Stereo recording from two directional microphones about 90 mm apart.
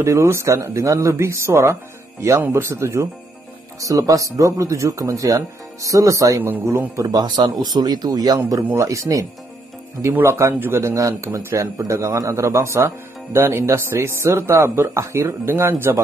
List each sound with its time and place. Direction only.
0.0 s speech: 30° right (ahead or behind)
8.7 s speech: 35° right (ahead or behind)